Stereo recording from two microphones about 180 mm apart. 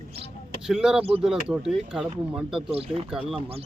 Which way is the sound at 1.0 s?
35° right (ahead or behind).